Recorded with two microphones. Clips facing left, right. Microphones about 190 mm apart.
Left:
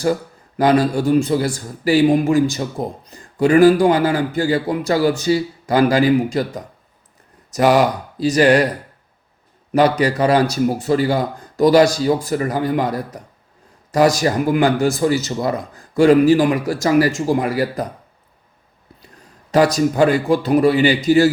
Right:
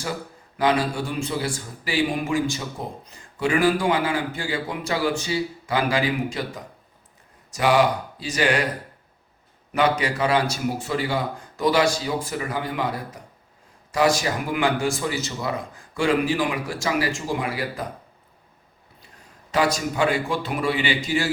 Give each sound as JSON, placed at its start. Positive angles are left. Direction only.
{"t": 0.5, "sound": "speech", "side_deg": 40}
{"t": 9.7, "sound": "speech", "side_deg": 40}
{"t": 19.5, "sound": "speech", "side_deg": 40}